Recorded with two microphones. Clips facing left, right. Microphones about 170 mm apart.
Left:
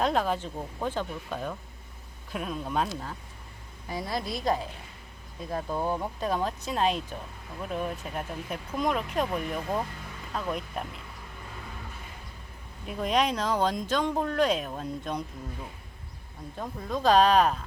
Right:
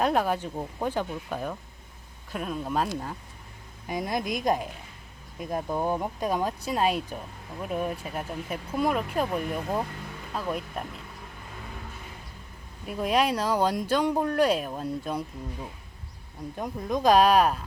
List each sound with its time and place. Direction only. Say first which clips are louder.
0.0 s speech: right 2 dB; 10° right (ahead or behind)
3.8 s speech: right 3 dB; 20° right (ahead or behind)
12.8 s speech: right 2 dB; 5° right (ahead or behind)
16.6 s speech: right 3 dB; 15° right (ahead or behind)